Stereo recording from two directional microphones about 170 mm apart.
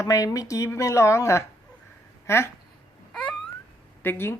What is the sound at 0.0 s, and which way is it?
Speech, 20° left (ahead or behind).